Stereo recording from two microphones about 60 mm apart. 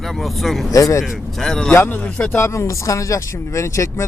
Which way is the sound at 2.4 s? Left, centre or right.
Left.